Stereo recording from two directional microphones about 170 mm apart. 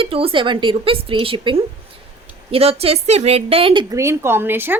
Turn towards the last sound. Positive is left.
turn(degrees=-10)  # may be behind; listen again after turning